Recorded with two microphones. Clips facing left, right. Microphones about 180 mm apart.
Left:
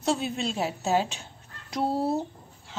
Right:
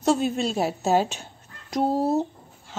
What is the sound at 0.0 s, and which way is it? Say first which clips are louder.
Speech: right 5 dB; 45° right (ahead or behind).